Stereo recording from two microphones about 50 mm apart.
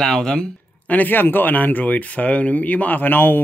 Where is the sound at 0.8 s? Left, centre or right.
Left.